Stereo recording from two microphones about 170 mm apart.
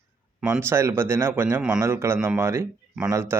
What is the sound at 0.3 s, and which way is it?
Speech, 5° right (ahead or behind).